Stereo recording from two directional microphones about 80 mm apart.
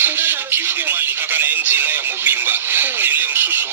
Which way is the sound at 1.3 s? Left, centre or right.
Right.